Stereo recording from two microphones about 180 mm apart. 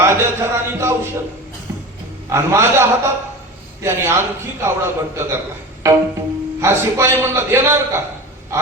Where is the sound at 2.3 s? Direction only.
15° right (ahead or behind).